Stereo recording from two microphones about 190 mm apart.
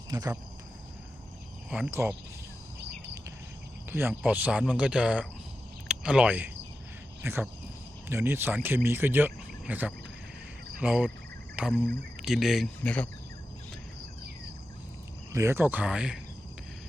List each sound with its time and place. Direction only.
0.1 s speech: 20° right (ahead or behind)
1.7 s speech: 10° right (ahead or behind)
3.8 s speech: 10° right (ahead or behind)
10.8 s cricket: 5° right (ahead or behind)
11.6 s speech: 5° right (ahead or behind)
15.3 s speech: 15° right (ahead or behind)